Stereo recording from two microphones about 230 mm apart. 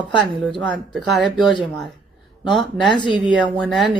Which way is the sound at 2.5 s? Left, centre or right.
Centre.